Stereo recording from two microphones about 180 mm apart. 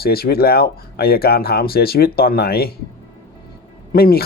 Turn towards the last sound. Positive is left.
turn(degrees=60)  # may be behind; listen again after turning